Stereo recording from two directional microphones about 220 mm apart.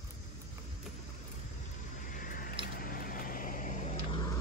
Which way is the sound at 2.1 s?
40° left (ahead or behind).